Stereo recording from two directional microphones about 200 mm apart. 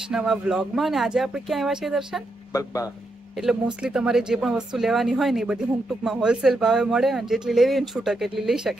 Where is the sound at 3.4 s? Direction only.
5° right (ahead or behind).